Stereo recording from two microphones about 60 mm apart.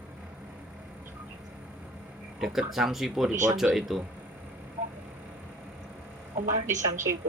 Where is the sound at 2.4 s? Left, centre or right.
Centre.